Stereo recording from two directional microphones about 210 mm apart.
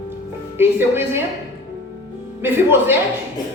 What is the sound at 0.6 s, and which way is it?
Speech, 10° right (ahead or behind).